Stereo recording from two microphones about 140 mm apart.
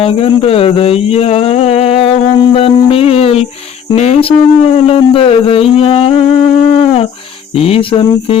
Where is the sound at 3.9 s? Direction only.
50° left (ahead or behind).